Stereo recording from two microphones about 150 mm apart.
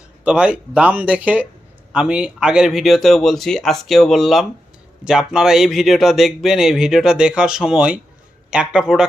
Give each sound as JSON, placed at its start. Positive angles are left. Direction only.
{"t": 0.3, "sound": "speech", "side_deg": -5}